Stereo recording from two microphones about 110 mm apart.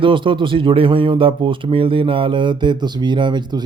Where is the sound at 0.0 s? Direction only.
50° right (ahead or behind).